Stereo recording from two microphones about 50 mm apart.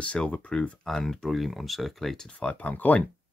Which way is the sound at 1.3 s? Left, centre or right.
Centre.